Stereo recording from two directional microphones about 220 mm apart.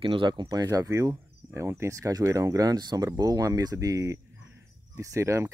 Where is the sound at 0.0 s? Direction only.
25° right (ahead or behind).